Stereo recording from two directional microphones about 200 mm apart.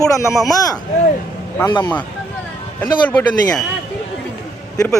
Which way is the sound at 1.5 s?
20° left (ahead or behind).